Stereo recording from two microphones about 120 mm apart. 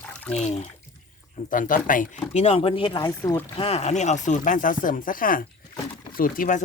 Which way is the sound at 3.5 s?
55° left (ahead or behind).